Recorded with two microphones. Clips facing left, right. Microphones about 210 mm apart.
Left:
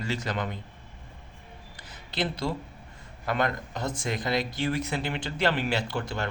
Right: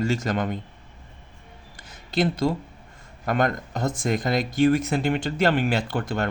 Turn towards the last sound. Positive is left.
turn(degrees=-50)  # may be behind; listen again after turning